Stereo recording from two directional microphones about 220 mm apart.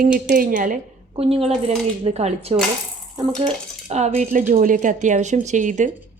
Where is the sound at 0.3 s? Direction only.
35° right (ahead or behind).